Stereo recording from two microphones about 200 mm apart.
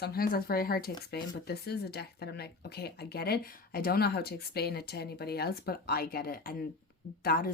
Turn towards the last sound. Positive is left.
turn(degrees=50)  # may be behind; listen again after turning